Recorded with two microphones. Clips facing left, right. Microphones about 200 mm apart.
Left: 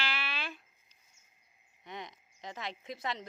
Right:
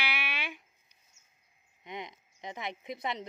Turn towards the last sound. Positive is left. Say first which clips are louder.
# right 2 dB
turn(degrees=-20)  # may be behind; listen again after turning